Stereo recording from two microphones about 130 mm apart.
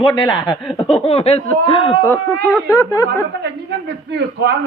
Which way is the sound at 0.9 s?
50° left (ahead or behind).